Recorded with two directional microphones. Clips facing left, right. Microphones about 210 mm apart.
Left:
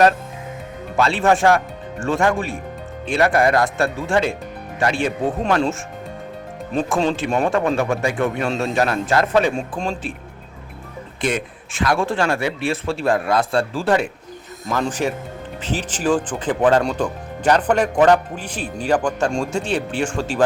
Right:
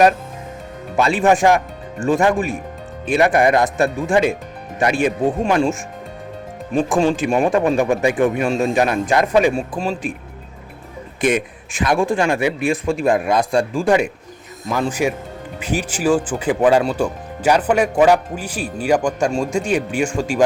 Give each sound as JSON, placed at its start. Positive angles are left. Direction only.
{"t": 0.9, "sound": "speech", "side_deg": -15}
{"t": 6.7, "sound": "speech", "side_deg": -15}
{"t": 11.2, "sound": "speech", "side_deg": -15}